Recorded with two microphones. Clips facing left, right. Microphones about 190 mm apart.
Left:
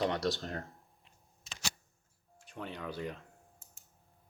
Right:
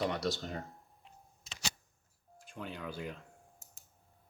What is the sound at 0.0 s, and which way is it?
Speech, 5° right (ahead or behind).